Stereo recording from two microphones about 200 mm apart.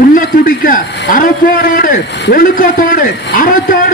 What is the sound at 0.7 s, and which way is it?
A man's voice, 45° left (ahead or behind).